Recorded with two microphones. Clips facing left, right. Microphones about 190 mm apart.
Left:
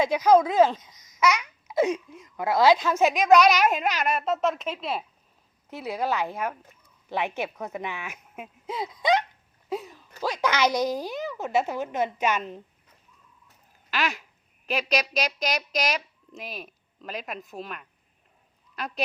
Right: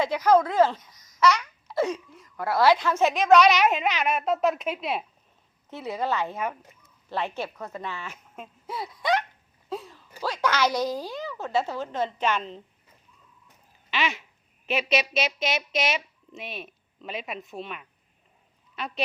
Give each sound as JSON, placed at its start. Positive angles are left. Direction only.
{"t": 0.0, "sound": "a child's voice", "side_deg": 15}
{"t": 5.7, "sound": "a woman's voice", "side_deg": 10}
{"t": 9.6, "sound": "a sound", "side_deg": 15}
{"t": 10.2, "sound": "a woman's voice", "side_deg": 15}
{"t": 13.9, "sound": "duck", "side_deg": 0}
{"t": 14.7, "sound": "speech", "side_deg": -5}